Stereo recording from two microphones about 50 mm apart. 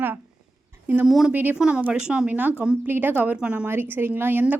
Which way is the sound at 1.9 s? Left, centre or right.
Centre.